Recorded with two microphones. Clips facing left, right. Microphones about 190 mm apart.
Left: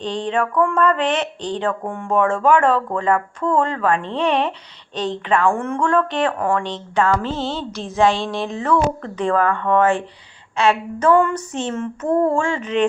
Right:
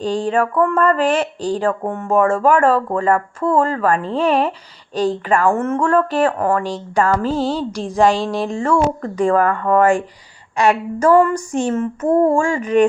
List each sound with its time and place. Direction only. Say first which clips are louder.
0.0 s speech: right 4 dB; 10° right (ahead or behind)
7.8 s a woman's voice: right 1 dB; 35° right (ahead or behind)
8.6 s speech: right 1 dB; 10° right (ahead or behind)